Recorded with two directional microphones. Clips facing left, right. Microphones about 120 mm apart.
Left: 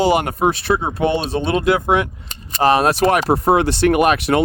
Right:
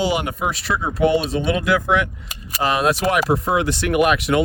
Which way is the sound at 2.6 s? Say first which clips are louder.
Left 4 dB; 40° left (ahead or behind).